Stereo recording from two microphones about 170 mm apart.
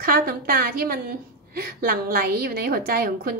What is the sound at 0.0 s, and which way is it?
A woman's voice, 60° right (ahead or behind).